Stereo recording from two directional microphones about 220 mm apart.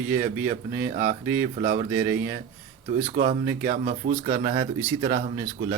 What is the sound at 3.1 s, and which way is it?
Speech, 40° right (ahead or behind).